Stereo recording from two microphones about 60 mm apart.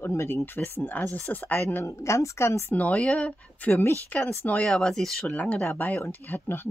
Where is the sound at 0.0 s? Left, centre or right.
Left.